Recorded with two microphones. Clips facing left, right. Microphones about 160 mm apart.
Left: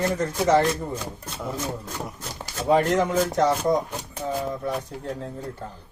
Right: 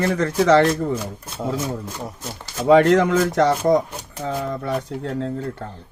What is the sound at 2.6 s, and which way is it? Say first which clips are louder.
Speech: right 6 dB; 80° right.